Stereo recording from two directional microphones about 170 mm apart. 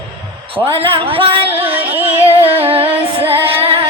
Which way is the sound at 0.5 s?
35° right (ahead or behind).